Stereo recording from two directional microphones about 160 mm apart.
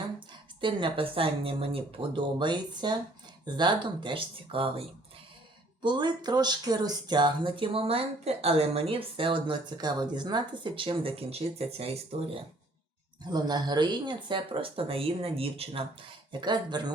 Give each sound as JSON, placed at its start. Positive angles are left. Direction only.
{"t": 0.6, "sound": "speech", "side_deg": -30}
{"t": 13.3, "sound": "speech", "side_deg": -25}